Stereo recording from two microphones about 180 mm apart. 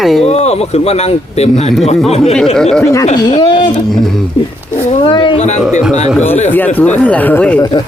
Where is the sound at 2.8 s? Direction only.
15° left (ahead or behind).